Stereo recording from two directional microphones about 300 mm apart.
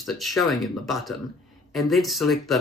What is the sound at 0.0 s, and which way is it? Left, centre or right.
Speech, centre.